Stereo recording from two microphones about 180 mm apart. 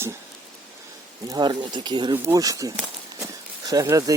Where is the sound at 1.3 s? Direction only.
25° right (ahead or behind).